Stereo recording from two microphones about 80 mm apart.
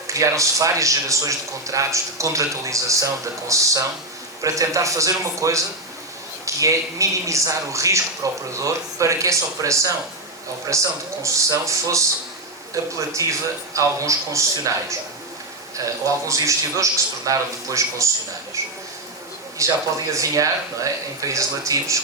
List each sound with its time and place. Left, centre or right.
0.1 s speech: right
19.6 s speech: right